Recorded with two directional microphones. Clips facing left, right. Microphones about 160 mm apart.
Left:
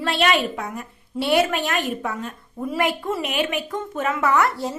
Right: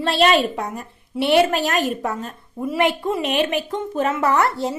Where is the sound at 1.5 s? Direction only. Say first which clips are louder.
Right 3 dB; 40° right (ahead or behind).